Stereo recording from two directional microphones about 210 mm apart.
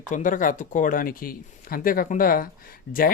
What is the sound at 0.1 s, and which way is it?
Speech, 40° left (ahead or behind).